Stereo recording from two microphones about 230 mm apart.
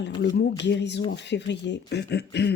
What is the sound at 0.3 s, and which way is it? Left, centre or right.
Speech, left.